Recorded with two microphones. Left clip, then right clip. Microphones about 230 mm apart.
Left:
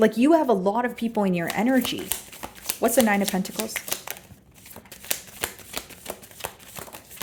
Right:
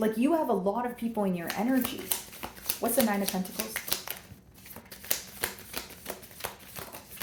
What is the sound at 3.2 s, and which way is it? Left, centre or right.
Speech, left.